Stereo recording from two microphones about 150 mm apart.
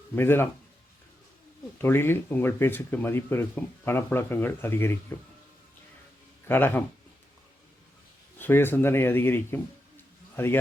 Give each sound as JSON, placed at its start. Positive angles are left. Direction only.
{"t": 0.2, "sound": "speech", "side_deg": 15}
{"t": 1.8, "sound": "speech", "side_deg": 15}
{"t": 6.5, "sound": "speech", "side_deg": 15}
{"t": 8.4, "sound": "a man's voice", "side_deg": 15}